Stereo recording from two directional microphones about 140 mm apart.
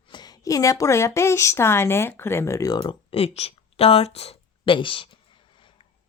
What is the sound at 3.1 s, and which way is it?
Speech, 45° left (ahead or behind).